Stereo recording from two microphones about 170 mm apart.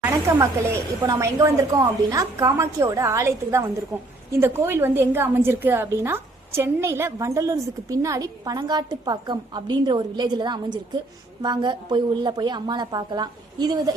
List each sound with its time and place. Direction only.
0.3 s a woman's voice: 20° right (ahead or behind)